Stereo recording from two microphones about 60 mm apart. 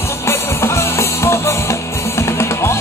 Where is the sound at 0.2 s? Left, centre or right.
Left.